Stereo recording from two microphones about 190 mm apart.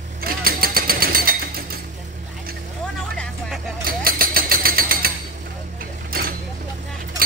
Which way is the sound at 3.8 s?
50° right (ahead or behind).